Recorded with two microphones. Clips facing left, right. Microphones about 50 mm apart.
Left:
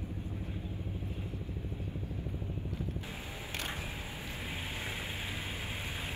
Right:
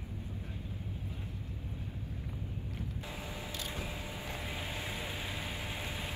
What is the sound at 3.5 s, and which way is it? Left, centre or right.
Vehicle, left.